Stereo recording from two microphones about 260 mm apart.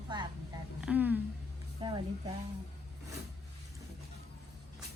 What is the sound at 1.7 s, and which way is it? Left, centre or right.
Speech, centre.